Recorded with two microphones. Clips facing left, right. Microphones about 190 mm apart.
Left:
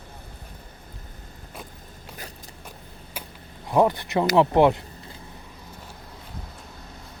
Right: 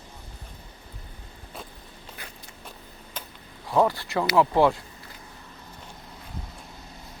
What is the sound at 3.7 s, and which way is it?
Speech, 20° left (ahead or behind).